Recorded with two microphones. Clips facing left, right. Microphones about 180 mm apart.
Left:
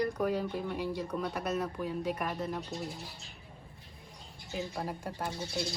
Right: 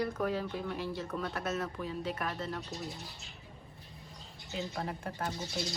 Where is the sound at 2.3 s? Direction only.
15° left (ahead or behind).